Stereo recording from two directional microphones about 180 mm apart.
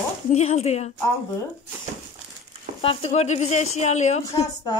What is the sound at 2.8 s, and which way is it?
Speech, 30° left (ahead or behind).